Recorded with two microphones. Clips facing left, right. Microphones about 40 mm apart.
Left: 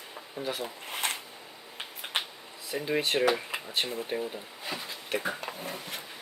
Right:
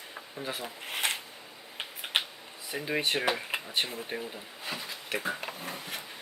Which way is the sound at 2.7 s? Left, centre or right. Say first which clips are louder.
Left 2 dB; centre.